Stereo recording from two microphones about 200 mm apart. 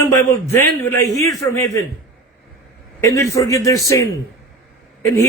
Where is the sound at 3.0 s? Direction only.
15° left (ahead or behind).